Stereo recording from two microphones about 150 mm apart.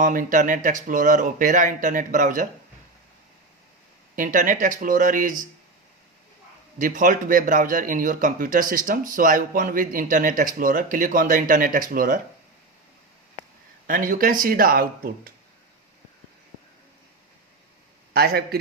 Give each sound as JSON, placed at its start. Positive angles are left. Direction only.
{"t": 0.0, "sound": "a man's voice", "side_deg": -65}
{"t": 4.1, "sound": "a man's voice", "side_deg": -60}
{"t": 6.7, "sound": "a man's voice", "side_deg": -60}
{"t": 13.8, "sound": "speech", "side_deg": -65}
{"t": 18.1, "sound": "a man's voice", "side_deg": -90}